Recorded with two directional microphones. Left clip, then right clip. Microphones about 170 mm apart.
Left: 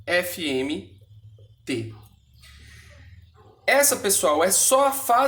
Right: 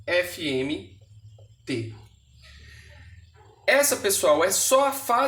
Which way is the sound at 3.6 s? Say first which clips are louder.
Left 1 dB; 15° left (ahead or behind).